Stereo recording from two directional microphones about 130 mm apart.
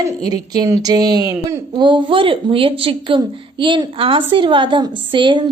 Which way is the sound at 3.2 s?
35° right (ahead or behind).